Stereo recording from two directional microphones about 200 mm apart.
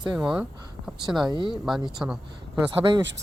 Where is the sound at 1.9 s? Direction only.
5° right (ahead or behind).